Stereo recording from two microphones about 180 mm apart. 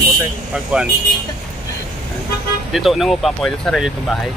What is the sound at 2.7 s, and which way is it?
Speech, centre (ahead or behind).